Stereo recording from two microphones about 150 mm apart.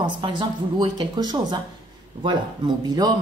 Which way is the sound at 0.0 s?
30° right (ahead or behind).